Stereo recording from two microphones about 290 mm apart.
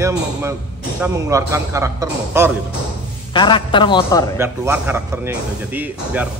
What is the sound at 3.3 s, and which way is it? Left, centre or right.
A man's voice, centre.